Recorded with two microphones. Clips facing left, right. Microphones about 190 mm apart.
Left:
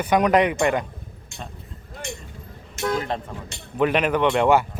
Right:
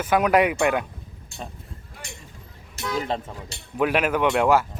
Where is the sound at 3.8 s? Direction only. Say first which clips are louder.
Left 1 dB; 5° right (ahead or behind).